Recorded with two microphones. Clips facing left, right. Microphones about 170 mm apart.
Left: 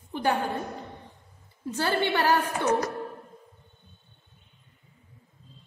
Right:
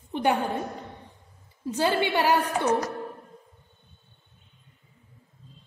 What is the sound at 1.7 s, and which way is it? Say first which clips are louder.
A woman's voice: right 2 dB; 15° right (ahead or behind).